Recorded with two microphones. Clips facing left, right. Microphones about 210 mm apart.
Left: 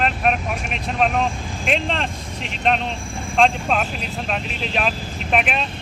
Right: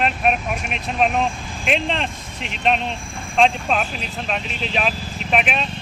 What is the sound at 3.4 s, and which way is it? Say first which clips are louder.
Speech: even; centre (ahead or behind).